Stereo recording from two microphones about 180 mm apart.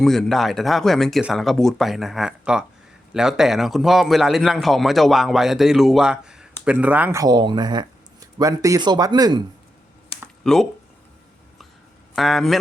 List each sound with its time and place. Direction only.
0.0 s a man's voice: centre (ahead or behind); by 9.4 s 20° right (ahead or behind)
10.4 s speech: 5° left (ahead or behind)
12.1 s a man's voice: centre (ahead or behind)